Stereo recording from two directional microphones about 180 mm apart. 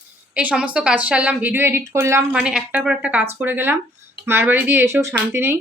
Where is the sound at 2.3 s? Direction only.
5° right (ahead or behind).